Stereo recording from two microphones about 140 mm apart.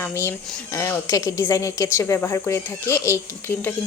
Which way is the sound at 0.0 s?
15° left (ahead or behind).